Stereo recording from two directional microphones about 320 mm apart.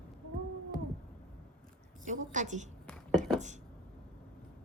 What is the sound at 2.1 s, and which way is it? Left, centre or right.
Speech, right.